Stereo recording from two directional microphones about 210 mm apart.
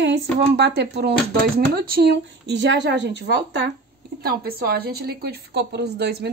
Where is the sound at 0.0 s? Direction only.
55° right (ahead or behind).